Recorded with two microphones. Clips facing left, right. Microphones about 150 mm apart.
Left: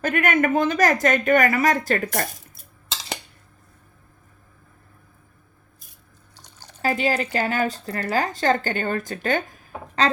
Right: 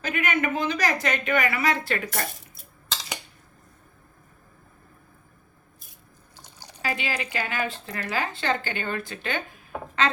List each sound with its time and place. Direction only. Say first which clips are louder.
0.0 s speech: left 6 dB; 50° left (ahead or behind)
6.3 s drip: right 1 dB; 10° right (ahead or behind)
6.8 s speech: left 7 dB; 40° left (ahead or behind)